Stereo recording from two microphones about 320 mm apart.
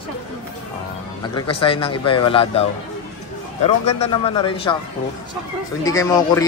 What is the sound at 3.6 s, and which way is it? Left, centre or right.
Speech, centre.